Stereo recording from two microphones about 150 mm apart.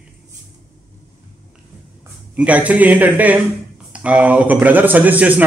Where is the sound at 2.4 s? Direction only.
10° right (ahead or behind).